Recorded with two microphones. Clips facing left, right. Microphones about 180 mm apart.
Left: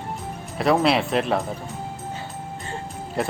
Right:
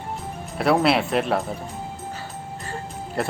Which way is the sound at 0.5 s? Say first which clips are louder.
Even; centre (ahead or behind).